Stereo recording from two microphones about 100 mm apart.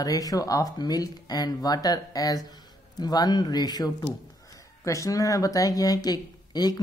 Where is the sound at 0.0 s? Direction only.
40° left (ahead or behind).